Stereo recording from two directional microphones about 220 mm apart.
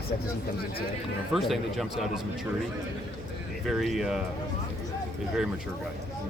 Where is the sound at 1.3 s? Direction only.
Centre (ahead or behind).